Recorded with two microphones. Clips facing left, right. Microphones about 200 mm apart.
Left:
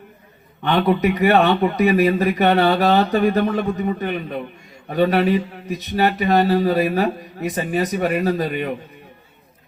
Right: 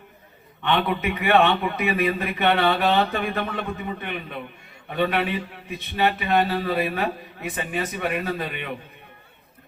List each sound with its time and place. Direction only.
0.6 s speech: 40° left (ahead or behind)